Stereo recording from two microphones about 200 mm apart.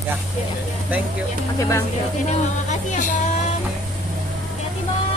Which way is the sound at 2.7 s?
40° left (ahead or behind).